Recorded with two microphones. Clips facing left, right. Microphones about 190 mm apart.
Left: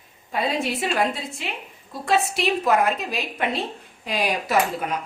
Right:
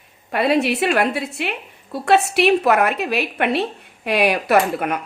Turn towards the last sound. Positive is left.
turn(degrees=-65)  # may be behind; listen again after turning